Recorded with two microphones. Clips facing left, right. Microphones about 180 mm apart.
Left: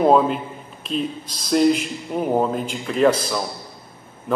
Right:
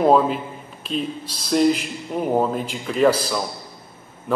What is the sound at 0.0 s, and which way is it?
Speech, centre (ahead or behind).